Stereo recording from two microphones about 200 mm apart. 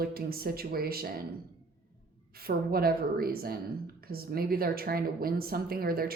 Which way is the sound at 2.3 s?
50° right (ahead or behind).